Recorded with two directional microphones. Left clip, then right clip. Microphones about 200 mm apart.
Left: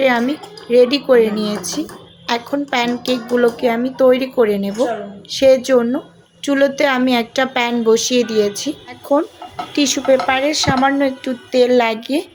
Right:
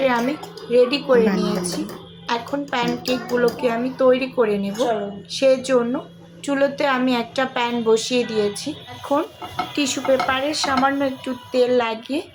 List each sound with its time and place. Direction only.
0.0 s a woman's voice: 30° left (ahead or behind)